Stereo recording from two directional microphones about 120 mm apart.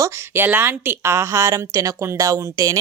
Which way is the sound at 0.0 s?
15° right (ahead or behind).